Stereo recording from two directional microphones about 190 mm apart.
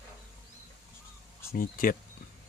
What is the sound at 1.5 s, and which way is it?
Speech, 45° left (ahead or behind).